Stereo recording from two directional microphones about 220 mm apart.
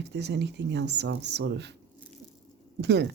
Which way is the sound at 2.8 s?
50° right (ahead or behind).